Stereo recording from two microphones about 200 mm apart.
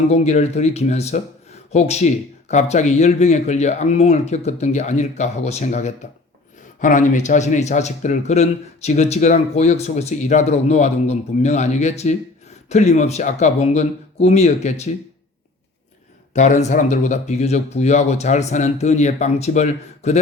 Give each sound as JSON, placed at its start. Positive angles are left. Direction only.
{"t": 0.1, "sound": "speech", "side_deg": 35}
{"t": 16.3, "sound": "speech", "side_deg": 35}